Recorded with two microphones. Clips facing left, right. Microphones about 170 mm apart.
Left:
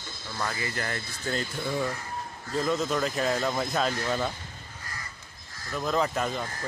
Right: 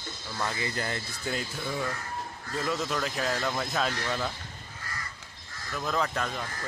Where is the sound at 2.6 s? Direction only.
Centre (ahead or behind).